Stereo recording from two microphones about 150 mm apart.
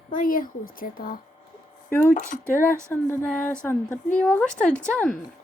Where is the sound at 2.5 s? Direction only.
15° left (ahead or behind).